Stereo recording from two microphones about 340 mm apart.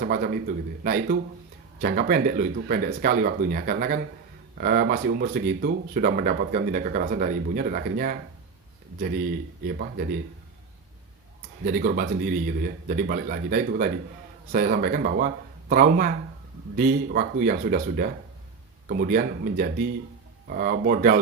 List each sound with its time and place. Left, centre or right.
0.0 s speech: right
9.6 s speech: right
11.6 s speech: right